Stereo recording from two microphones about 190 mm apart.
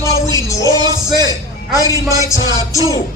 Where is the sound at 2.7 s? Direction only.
20° right (ahead or behind).